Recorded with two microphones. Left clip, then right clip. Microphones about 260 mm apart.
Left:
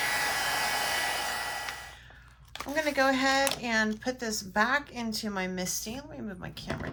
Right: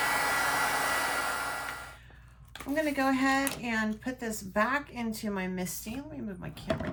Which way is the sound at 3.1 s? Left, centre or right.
Centre.